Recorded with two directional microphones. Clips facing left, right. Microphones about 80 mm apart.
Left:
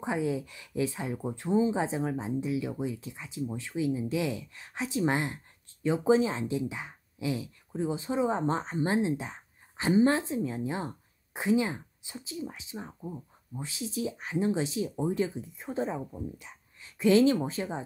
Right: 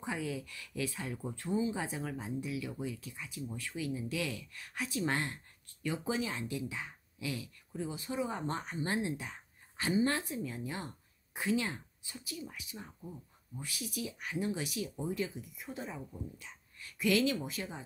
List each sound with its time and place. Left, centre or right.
0.0 s speech: left
13.6 s speech: left